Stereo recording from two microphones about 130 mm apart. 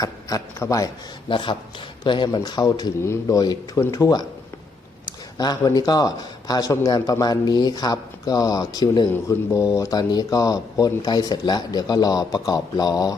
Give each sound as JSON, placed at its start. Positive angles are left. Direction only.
{"t": 0.0, "sound": "speech", "side_deg": 30}
{"t": 1.3, "sound": "speech", "side_deg": 40}
{"t": 5.4, "sound": "speech", "side_deg": 30}